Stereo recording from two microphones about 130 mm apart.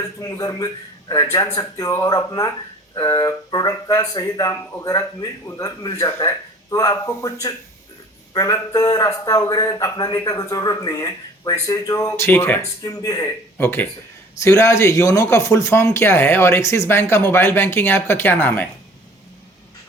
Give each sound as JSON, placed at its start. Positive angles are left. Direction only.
{"t": 0.0, "sound": "speech", "side_deg": 25}